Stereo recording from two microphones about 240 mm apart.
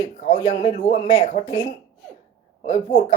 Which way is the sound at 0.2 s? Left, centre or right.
Left.